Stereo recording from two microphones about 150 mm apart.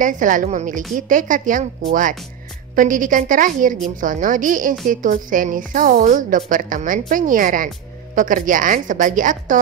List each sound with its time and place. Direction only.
0.0 s a woman's voice: 60° right (ahead or behind)
2.7 s a woman's voice: 60° right (ahead or behind)